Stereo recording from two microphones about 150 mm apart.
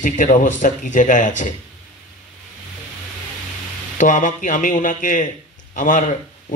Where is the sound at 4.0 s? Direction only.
55° left (ahead or behind).